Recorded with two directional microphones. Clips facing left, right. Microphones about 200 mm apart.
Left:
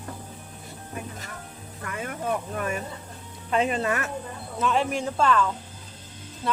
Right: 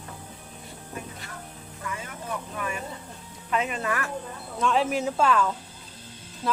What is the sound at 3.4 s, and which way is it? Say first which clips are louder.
Speech: left 4 dB; 30° left (ahead or behind).